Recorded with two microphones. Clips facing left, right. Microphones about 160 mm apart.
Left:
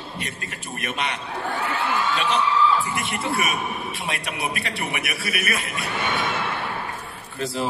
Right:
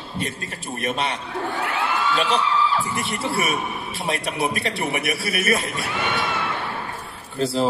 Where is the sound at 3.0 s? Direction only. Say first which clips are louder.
Right 1 dB; 35° right (ahead or behind).